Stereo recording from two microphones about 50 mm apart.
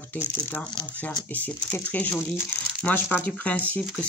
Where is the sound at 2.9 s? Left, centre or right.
Left.